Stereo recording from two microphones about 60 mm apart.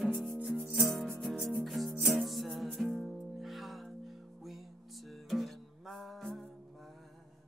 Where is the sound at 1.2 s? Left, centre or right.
Centre.